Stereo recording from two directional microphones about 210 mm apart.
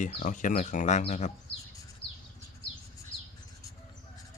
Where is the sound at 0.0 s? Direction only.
35° left (ahead or behind).